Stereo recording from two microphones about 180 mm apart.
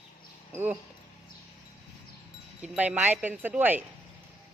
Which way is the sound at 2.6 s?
10° right (ahead or behind).